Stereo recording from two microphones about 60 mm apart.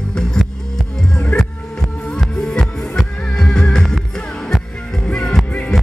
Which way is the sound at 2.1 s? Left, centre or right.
Centre.